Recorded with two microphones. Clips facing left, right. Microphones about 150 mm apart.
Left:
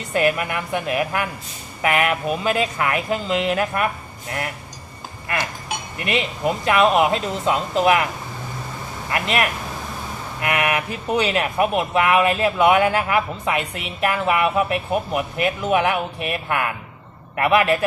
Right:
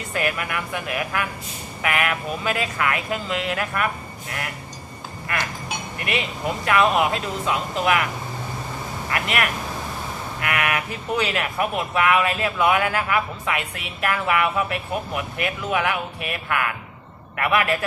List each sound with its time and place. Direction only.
0.1 s speech: 25° left (ahead or behind)
5.3 s speech: 25° left (ahead or behind)
9.1 s speech: 25° left (ahead or behind)